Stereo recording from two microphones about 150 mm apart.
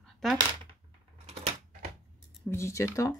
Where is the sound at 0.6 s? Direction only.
45° right (ahead or behind).